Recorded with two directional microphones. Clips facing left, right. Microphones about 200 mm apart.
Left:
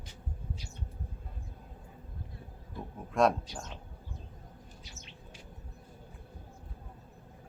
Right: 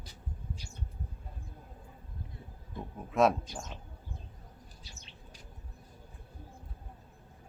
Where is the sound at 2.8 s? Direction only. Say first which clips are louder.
Right 1 dB; 20° right (ahead or behind).